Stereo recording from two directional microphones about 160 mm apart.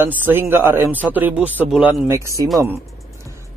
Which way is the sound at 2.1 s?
20° right (ahead or behind).